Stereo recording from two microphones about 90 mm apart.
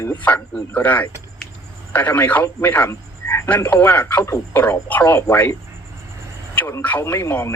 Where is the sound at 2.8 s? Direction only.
35° left (ahead or behind).